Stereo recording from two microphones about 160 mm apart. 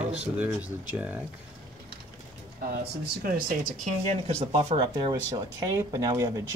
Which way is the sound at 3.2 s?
60° right (ahead or behind).